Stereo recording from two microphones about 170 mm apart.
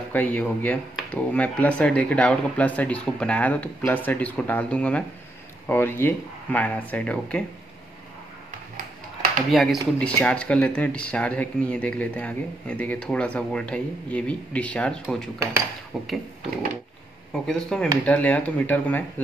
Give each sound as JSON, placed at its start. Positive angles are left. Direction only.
{"t": 0.1, "sound": "speech", "side_deg": 10}
{"t": 9.5, "sound": "speech", "side_deg": 0}
{"t": 15.3, "sound": "speech", "side_deg": -15}
{"t": 15.9, "sound": "speech", "side_deg": 0}
{"t": 17.3, "sound": "speech", "side_deg": 5}